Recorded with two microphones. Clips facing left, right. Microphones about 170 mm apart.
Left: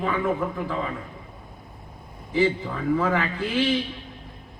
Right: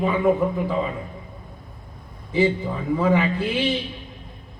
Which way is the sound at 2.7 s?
15° right (ahead or behind).